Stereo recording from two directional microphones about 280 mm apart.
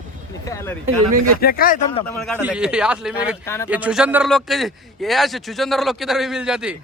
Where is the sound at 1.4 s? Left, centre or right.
Left.